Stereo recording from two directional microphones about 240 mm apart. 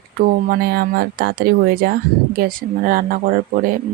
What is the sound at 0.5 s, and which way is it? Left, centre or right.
Speech, right.